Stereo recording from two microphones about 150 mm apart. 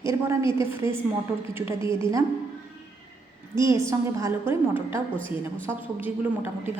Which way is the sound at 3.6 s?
20° right (ahead or behind).